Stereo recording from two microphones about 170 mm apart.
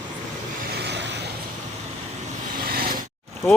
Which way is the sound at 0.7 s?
85° right.